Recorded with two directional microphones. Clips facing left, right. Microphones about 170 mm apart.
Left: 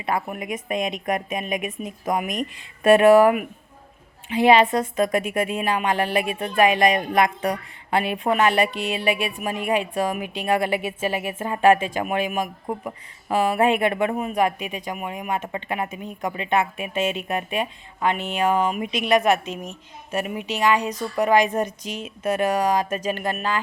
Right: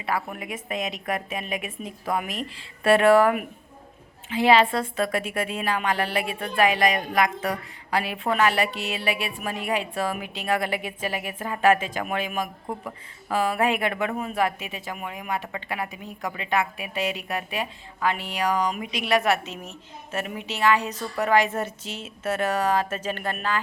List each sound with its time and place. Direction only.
0.0 s speech: 20° left (ahead or behind)